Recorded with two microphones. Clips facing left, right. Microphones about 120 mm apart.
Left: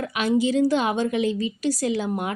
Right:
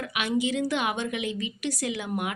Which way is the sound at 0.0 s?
35° left (ahead or behind).